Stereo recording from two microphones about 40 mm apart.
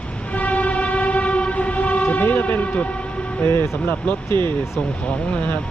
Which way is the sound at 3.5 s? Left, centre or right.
Left.